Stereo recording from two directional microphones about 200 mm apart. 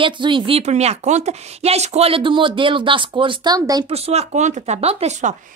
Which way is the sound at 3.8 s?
30° right (ahead or behind).